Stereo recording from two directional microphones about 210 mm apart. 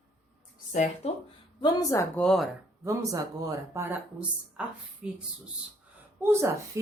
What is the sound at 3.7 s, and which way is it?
A woman's voice, 10° right (ahead or behind).